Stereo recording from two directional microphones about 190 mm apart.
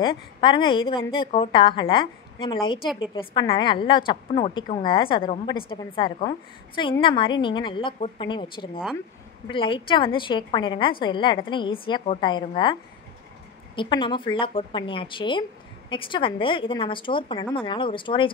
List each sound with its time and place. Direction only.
0.0 s a woman's voice: 25° left (ahead or behind)
13.7 s a woman's voice: 25° left (ahead or behind)